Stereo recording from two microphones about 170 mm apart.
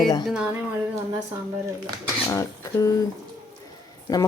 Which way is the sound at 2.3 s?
20° left (ahead or behind).